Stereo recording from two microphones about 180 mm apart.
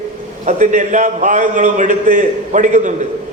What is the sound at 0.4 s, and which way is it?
A man's voice, 45° right (ahead or behind).